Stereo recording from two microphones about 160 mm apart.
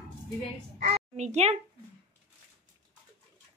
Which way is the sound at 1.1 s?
45° right (ahead or behind).